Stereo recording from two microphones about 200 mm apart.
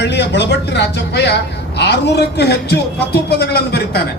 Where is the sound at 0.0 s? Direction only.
60° left (ahead or behind).